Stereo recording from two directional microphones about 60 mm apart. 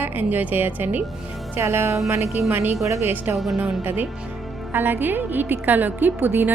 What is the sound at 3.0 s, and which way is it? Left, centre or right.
A woman's voice, right.